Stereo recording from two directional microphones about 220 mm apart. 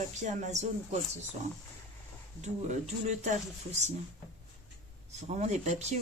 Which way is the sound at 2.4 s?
30° right (ahead or behind).